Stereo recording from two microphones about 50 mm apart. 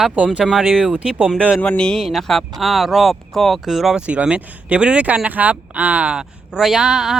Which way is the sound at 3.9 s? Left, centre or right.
Right.